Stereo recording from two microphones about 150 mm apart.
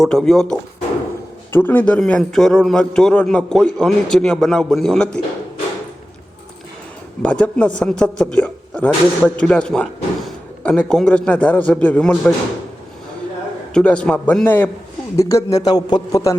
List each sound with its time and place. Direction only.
0.0 s a man's voice: 5° left (ahead or behind)
1.5 s a man's voice: 15° left (ahead or behind)
7.2 s a man's voice: 5° left (ahead or behind)
13.7 s a man's voice: 5° left (ahead or behind); by 16.3 s 25° left (ahead or behind)